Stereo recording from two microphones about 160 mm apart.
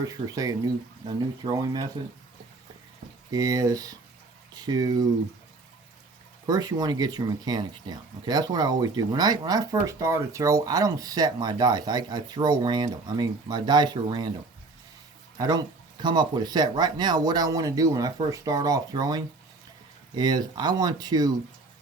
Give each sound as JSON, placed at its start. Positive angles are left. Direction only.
{"t": 0.0, "sound": "speech", "side_deg": -20}
{"t": 1.4, "sound": "speech", "side_deg": -40}
{"t": 2.0, "sound": "speech", "side_deg": -25}
{"t": 3.3, "sound": "speech", "side_deg": -20}
{"t": 6.4, "sound": "speech", "side_deg": -25}
{"t": 15.4, "sound": "speech", "side_deg": -25}